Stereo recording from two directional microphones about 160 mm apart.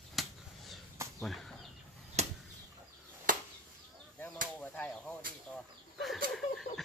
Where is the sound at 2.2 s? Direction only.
45° right (ahead or behind).